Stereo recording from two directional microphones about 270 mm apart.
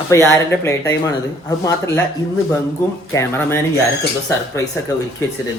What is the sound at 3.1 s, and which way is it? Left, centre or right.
Music, centre.